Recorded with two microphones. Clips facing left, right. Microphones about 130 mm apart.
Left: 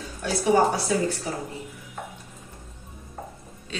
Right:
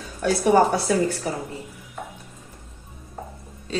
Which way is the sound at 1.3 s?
65° right (ahead or behind).